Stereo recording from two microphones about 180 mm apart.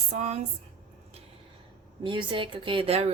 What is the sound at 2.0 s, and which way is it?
A woman's voice, 25° right (ahead or behind).